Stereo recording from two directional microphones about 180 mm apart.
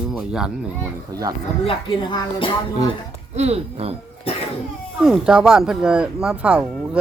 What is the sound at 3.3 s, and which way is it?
Speech, 35° right (ahead or behind).